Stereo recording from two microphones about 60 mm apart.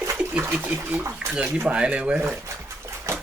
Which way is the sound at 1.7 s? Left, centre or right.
Centre.